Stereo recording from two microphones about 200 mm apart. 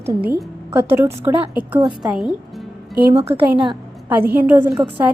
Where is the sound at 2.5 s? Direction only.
5° right (ahead or behind).